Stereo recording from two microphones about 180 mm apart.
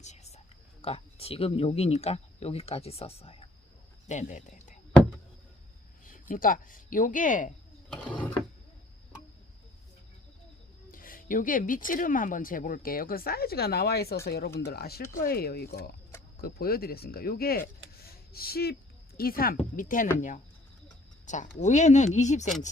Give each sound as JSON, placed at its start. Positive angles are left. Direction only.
{"t": 0.0, "sound": "speech", "side_deg": 40}
{"t": 4.1, "sound": "speech", "side_deg": 40}
{"t": 6.1, "sound": "speech", "side_deg": 50}
{"t": 10.9, "sound": "speech", "side_deg": 50}